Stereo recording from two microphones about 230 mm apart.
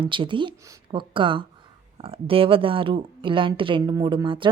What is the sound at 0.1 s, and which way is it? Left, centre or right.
Speech, right.